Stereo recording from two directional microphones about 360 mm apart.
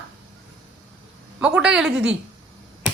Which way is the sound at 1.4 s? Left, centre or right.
Centre.